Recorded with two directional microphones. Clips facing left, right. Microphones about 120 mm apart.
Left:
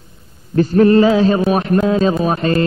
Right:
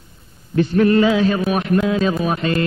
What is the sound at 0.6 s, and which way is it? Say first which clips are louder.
A man's voice: left 4 dB; 40° left (ahead or behind).